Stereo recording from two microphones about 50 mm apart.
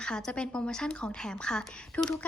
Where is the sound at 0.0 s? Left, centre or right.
Centre.